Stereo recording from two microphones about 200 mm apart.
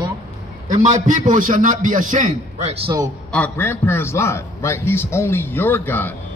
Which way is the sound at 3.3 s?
10° left (ahead or behind).